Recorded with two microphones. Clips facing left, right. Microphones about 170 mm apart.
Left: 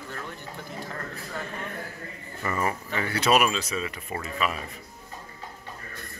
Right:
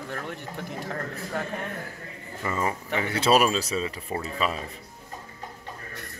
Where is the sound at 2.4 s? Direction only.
20° right (ahead or behind).